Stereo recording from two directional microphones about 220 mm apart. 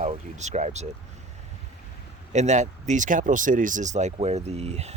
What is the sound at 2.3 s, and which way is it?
Speech, 30° right (ahead or behind).